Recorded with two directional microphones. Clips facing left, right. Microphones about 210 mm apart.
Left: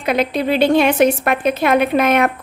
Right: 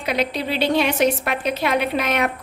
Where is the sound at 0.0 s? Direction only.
50° left (ahead or behind).